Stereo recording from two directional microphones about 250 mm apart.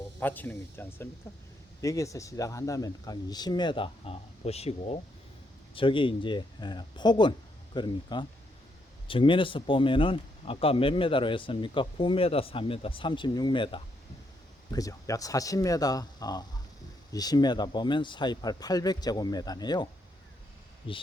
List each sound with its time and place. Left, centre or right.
0.2 s speech: centre